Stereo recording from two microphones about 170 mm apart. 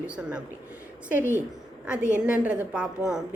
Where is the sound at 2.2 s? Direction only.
5° right (ahead or behind).